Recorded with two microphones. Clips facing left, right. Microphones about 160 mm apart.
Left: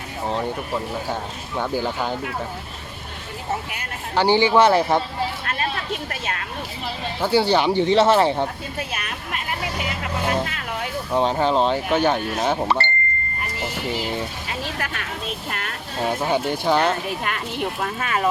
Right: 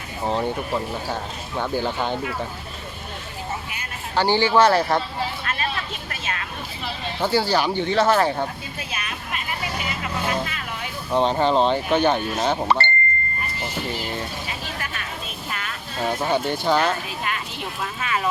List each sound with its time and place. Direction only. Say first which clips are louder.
0.3 s speech: right 2 dB; centre (ahead or behind)
1.5 s speech: even; 10° left (ahead or behind)
4.1 s speech: left 2 dB; 15° left (ahead or behind)
7.2 s speech: left 2 dB; 15° left (ahead or behind)
8.9 s speech: left 1 dB; 55° left (ahead or behind)
10.0 s vehicle: left 2 dB; 50° left (ahead or behind)
11.1 s speech: right 1 dB; 5° left (ahead or behind)
13.6 s vehicle: left 3 dB; 5° left (ahead or behind)
15.4 s music: left 1 dB; 60° left (ahead or behind)
16.0 s speech: left 1 dB; 10° left (ahead or behind)
17.1 s speech: left 3 dB; 55° left (ahead or behind)